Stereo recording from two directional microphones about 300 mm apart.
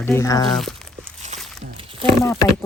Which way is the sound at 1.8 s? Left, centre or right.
Centre.